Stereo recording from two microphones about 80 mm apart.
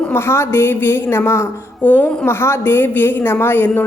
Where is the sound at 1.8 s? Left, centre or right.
Left.